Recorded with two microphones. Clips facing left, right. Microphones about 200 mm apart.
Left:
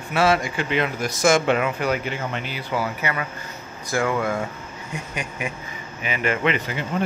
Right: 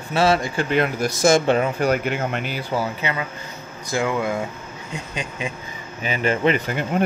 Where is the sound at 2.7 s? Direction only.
25° right (ahead or behind); by 6.8 s 45° right (ahead or behind).